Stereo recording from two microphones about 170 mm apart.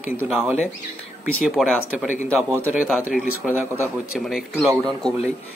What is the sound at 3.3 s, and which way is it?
Speech, 10° right (ahead or behind).